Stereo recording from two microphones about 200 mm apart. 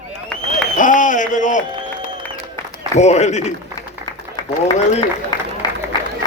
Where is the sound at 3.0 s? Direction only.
35° left (ahead or behind).